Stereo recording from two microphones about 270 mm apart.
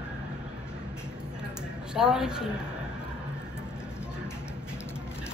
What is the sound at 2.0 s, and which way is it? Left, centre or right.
Speech, centre.